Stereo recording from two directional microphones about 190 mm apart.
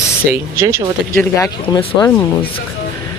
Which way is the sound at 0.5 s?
15° right (ahead or behind).